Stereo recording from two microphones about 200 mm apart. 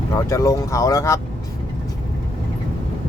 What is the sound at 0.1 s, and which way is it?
Speech, 15° left (ahead or behind).